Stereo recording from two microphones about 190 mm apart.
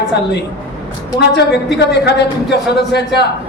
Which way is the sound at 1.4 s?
60° left (ahead or behind).